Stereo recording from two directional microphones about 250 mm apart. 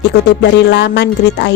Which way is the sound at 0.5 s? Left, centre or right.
Left.